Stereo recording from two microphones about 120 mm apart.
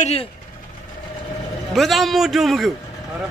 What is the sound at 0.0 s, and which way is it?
Speech, 55° left (ahead or behind).